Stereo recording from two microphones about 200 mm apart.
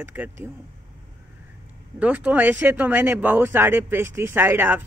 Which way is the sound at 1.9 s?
5° right (ahead or behind).